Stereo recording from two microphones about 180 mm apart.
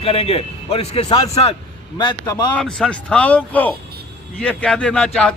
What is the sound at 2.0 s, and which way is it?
Speech, 25° left (ahead or behind).